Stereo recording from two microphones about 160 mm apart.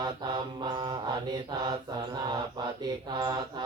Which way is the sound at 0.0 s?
30° right (ahead or behind).